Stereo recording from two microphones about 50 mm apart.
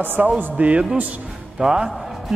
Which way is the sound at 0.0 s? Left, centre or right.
Right.